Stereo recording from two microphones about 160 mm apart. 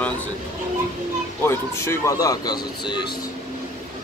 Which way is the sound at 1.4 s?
15° left (ahead or behind).